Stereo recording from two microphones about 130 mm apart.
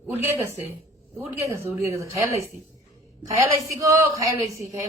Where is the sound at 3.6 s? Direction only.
25° right (ahead or behind).